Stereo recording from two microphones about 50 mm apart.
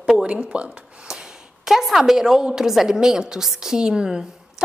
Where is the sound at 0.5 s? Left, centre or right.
Right.